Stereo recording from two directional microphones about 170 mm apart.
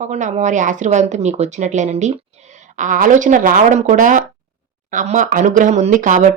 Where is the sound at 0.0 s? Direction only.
45° right (ahead or behind).